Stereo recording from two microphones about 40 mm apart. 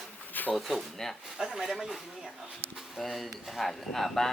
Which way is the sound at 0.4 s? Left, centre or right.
Left.